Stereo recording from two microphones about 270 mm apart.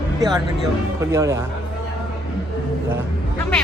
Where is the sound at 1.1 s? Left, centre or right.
Centre.